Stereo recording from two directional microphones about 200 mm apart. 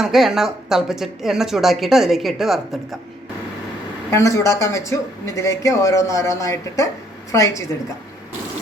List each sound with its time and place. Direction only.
0.0 s speech: centre (ahead or behind)
4.1 s speech: 15° left (ahead or behind)